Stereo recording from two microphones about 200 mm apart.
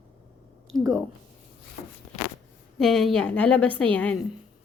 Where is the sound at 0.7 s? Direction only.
Centre (ahead or behind).